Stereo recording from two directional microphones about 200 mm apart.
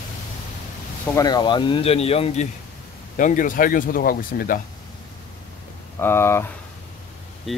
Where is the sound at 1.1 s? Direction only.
20° left (ahead or behind).